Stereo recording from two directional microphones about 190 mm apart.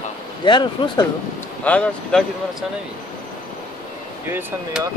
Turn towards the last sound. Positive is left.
turn(degrees=-10)  # may be behind; listen again after turning